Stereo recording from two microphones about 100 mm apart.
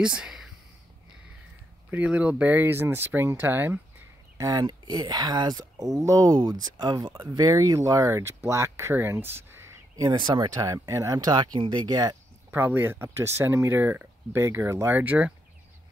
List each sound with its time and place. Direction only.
0.0 s speech: 10° right (ahead or behind)
1.9 s speech: 15° right (ahead or behind)
4.4 s speech: 40° right (ahead or behind); by 9.7 s 25° right (ahead or behind)
9.9 s speech: 45° right (ahead or behind)
10.6 s speech: 30° right (ahead or behind)
12.4 s speech: 20° right (ahead or behind)